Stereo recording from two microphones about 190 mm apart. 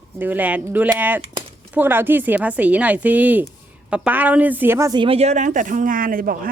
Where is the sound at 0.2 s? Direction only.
10° right (ahead or behind).